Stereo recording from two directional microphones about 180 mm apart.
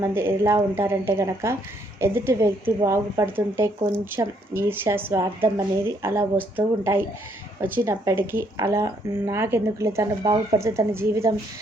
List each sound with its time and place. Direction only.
0.0 s speech: 15° right (ahead or behind)